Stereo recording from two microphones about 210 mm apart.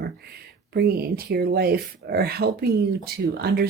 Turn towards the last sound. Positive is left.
turn(degrees=-50)  # may be behind; listen again after turning